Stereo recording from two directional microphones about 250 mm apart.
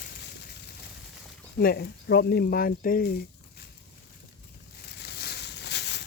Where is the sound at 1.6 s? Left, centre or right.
Left.